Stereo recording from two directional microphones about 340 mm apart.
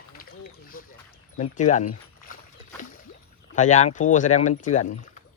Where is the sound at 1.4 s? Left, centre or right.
Left.